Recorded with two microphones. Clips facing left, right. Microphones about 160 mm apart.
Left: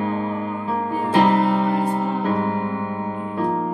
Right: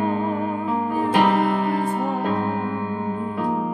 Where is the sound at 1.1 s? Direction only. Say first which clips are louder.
Left 2 dB; 30° left (ahead or behind).